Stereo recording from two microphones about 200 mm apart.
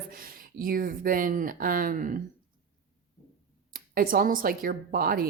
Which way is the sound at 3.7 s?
45° right (ahead or behind).